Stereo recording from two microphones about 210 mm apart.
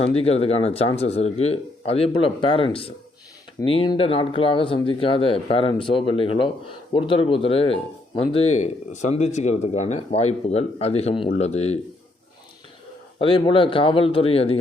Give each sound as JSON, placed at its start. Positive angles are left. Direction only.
{"t": 0.0, "sound": "speech", "side_deg": 30}
{"t": 13.1, "sound": "speech", "side_deg": 25}